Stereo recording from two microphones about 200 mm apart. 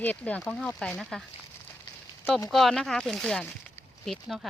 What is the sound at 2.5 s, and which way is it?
Speech, centre (ahead or behind).